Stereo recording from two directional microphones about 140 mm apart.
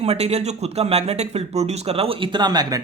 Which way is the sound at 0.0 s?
50° right (ahead or behind).